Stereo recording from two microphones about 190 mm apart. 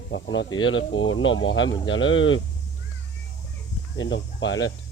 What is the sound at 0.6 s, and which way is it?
Speech, 90° left.